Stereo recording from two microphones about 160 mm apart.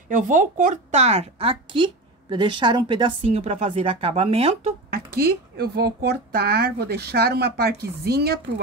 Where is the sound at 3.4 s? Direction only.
45° right (ahead or behind).